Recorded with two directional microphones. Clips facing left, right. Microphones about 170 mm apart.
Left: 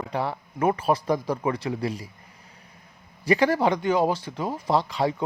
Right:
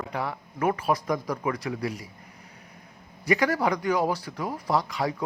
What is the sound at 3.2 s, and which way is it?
Speech, 30° left (ahead or behind).